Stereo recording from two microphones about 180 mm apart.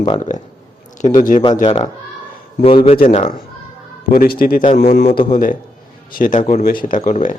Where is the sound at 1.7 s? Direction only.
30° left (ahead or behind).